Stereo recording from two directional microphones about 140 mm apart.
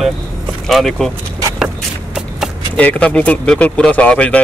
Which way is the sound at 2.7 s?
10° left (ahead or behind).